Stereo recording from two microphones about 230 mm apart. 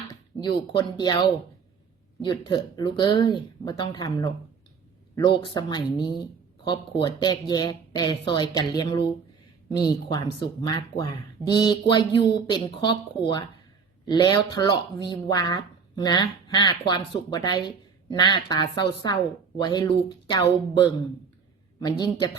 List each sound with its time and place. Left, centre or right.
0.8 s speech: centre